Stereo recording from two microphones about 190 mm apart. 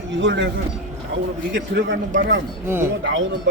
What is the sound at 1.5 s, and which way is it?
Speech, 65° right (ahead or behind).